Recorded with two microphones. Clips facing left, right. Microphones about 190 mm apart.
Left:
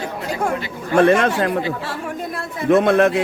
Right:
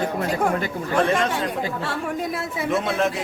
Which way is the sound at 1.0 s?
65° left (ahead or behind).